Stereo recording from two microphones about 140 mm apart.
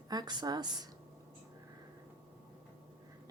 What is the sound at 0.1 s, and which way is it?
Speech, 30° right (ahead or behind).